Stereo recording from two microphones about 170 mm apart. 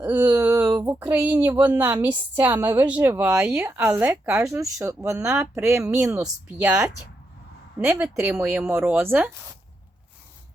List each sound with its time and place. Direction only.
0.0 s a woman's voice: 10° right (ahead or behind)
8.2 s a woman's voice: 15° right (ahead or behind)